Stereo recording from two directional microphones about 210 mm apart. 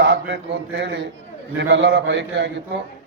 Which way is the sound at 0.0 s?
55° right (ahead or behind).